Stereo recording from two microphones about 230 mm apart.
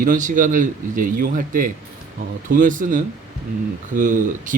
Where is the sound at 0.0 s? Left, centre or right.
Right.